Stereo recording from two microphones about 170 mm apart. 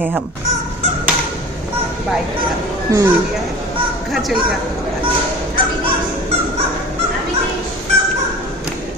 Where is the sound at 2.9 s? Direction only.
20° right (ahead or behind).